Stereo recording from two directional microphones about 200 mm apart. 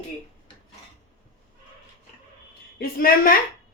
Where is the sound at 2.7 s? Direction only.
50° left (ahead or behind).